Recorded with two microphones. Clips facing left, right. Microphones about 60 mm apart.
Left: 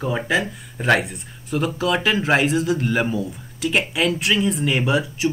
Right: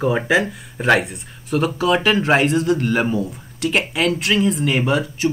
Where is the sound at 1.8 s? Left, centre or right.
Centre.